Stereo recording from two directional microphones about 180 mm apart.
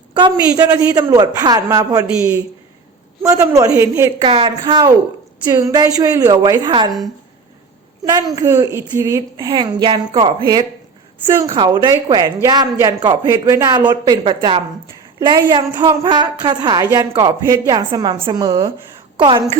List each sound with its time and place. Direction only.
0.1 s a woman's voice: 25° right (ahead or behind)
2.0 s a woman's voice: 5° right (ahead or behind)
4.2 s a woman's voice: 25° right (ahead or behind)
8.4 s a woman's voice: 20° right (ahead or behind)
19.2 s a woman's voice: 35° right (ahead or behind)